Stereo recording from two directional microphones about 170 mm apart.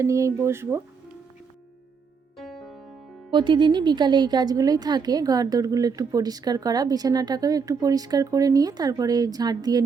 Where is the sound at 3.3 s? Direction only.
30° right (ahead or behind).